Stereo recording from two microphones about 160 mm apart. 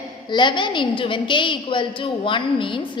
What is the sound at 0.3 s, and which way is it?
A woman's voice, 30° left (ahead or behind).